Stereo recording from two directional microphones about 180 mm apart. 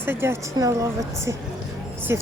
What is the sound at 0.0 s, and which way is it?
A woman's voice, 10° right (ahead or behind).